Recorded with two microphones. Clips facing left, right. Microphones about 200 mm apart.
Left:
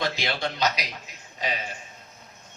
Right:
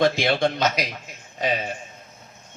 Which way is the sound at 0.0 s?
50° right (ahead or behind).